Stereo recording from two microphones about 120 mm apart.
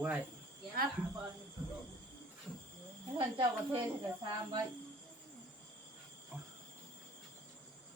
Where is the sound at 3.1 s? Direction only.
45° right (ahead or behind).